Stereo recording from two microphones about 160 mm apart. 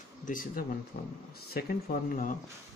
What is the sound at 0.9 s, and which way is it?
Speech, 90° left.